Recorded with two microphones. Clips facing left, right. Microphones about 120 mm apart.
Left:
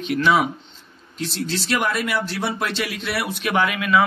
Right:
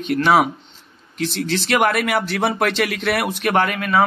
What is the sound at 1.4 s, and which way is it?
Speech, 65° right (ahead or behind).